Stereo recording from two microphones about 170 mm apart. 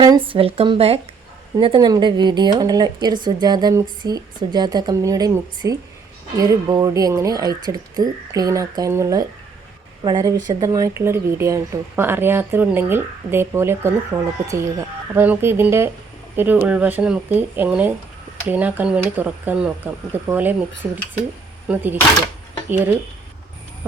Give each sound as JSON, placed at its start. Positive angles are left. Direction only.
{"t": 0.0, "sound": "speech", "side_deg": -30}